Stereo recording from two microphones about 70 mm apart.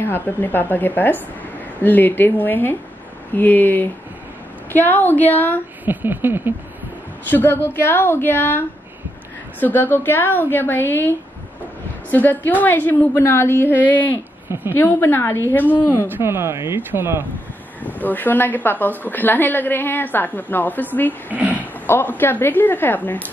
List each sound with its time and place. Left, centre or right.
0.0 s a woman's voice: left
5.9 s speech: right
7.2 s a woman's voice: left
14.5 s speech: right
14.8 s a woman's voice: left
16.1 s speech: right
17.8 s a woman's voice: left
21.3 s speech: right
21.8 s a woman's voice: left